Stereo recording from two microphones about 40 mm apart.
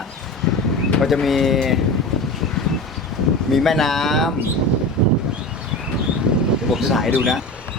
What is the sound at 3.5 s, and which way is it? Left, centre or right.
Speech, centre.